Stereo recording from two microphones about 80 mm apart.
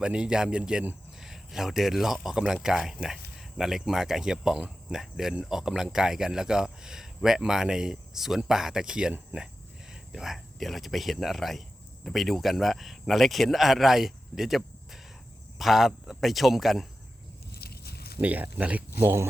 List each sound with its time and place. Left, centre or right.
0.0 s a man's voice: centre
18.2 s speech: centre
18.9 s speech: right